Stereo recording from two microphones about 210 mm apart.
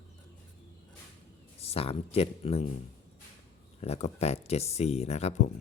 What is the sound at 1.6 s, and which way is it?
Speech, 30° left (ahead or behind).